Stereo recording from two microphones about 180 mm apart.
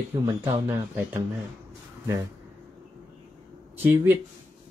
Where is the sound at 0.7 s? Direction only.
10° right (ahead or behind).